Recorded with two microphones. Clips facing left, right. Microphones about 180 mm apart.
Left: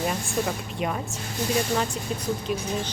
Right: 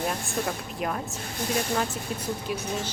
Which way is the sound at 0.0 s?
Centre (ahead or behind).